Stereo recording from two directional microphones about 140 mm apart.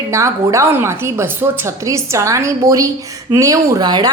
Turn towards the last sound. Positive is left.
turn(degrees=-30)  # may be behind; listen again after turning